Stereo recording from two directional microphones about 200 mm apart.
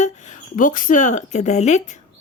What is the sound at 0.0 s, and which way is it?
Speech, 35° left (ahead or behind).